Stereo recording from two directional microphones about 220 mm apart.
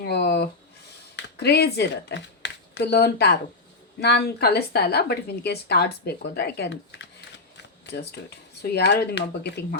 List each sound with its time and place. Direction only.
0.0 s a sound: 50° left (ahead or behind)
1.1 s a woman's voice: 50° left (ahead or behind)
8.7 s a woman's voice: 50° left (ahead or behind)